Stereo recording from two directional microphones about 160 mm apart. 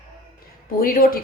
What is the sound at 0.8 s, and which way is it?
Speech, 65° left (ahead or behind).